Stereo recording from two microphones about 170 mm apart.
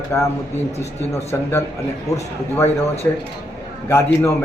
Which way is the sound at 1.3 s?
15° left (ahead or behind).